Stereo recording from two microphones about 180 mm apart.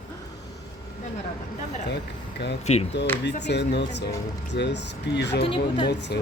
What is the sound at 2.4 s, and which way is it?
Speech, 70° left (ahead or behind).